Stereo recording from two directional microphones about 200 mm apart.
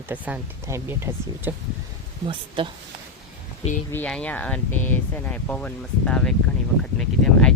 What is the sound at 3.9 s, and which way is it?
Speech, 5° left (ahead or behind).